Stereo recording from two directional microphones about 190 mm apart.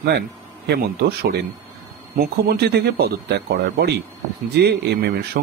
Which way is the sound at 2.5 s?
60° right (ahead or behind).